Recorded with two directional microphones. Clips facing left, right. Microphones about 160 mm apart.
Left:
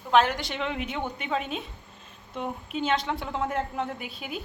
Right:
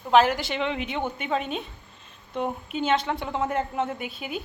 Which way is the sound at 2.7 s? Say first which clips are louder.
Right 2 dB; centre (ahead or behind).